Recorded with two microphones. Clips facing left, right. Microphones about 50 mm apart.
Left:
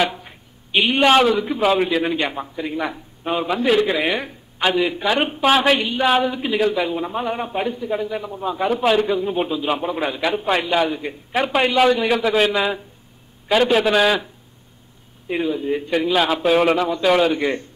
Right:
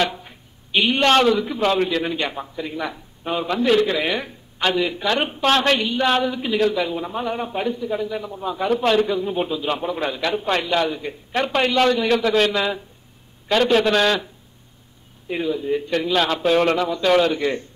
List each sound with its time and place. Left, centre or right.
0.0 s a man's voice: centre
15.2 s a man's voice: centre